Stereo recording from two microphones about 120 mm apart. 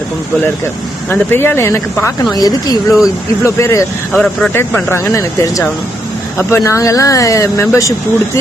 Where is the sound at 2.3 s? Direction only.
30° left (ahead or behind).